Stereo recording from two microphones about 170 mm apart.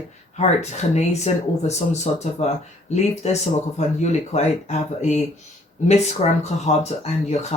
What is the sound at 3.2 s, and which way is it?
Speech, 40° left (ahead or behind).